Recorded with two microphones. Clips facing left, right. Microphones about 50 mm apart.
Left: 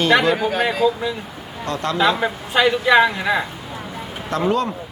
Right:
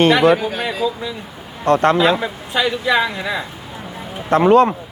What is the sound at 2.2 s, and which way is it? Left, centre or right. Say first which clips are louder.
Speech: left 2 dB; left.